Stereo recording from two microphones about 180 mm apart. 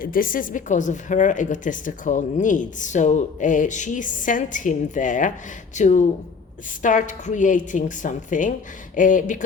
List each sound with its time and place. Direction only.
0.0 s a woman's voice: 50° left (ahead or behind)